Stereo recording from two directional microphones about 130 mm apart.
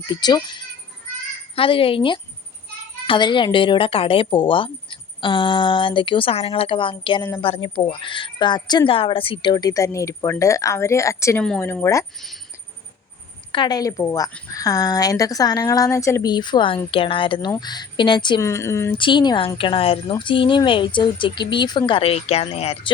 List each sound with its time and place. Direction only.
0.1 s speech: 30° left (ahead or behind)
1.5 s a woman's voice: 45° left (ahead or behind); by 12.0 s 20° left (ahead or behind)
13.5 s a woman's voice: 35° left (ahead or behind)
18.3 s a woman's voice: 20° left (ahead or behind)
18.9 s speech: 40° left (ahead or behind)